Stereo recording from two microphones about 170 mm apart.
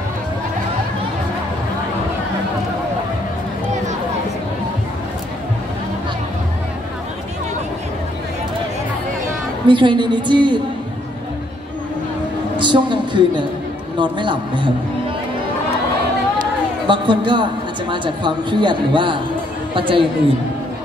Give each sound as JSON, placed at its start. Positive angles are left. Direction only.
{"t": 9.7, "sound": "speech", "side_deg": -30}
{"t": 12.5, "sound": "a woman's voice", "side_deg": -30}
{"t": 16.8, "sound": "a woman's voice", "side_deg": -30}